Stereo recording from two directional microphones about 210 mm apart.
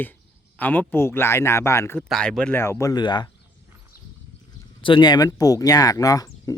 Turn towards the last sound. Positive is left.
turn(degrees=15)  # may be behind; listen again after turning